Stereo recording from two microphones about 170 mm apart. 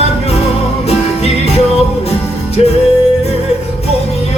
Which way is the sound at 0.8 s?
40° left (ahead or behind).